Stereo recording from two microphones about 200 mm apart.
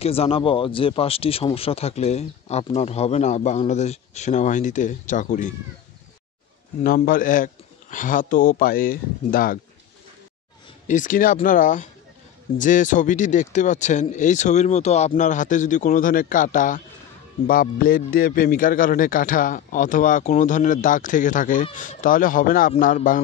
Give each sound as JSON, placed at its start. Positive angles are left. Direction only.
{"t": 0.0, "sound": "speech", "side_deg": 30}
{"t": 6.8, "sound": "speech", "side_deg": 45}
{"t": 10.9, "sound": "speech", "side_deg": 40}